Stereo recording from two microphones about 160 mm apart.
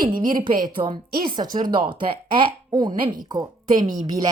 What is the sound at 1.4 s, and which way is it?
Speech, 60° right (ahead or behind).